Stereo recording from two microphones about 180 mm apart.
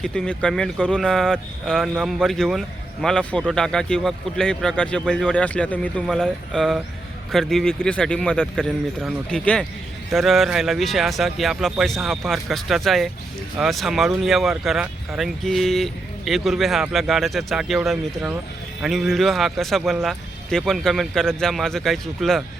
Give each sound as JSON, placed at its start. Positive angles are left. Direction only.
{"t": 0.0, "sound": "speech", "side_deg": 5}